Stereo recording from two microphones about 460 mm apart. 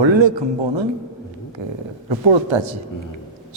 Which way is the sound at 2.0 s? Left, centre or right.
Right.